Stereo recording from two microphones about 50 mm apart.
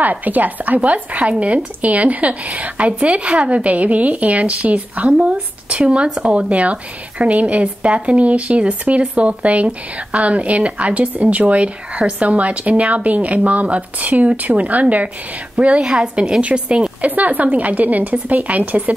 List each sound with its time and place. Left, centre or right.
0.0 s speech: right
17.1 s speech: right